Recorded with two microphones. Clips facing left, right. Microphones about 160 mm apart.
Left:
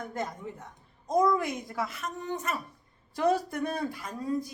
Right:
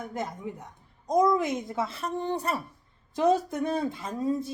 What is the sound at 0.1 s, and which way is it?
A woman's voice, 15° right (ahead or behind).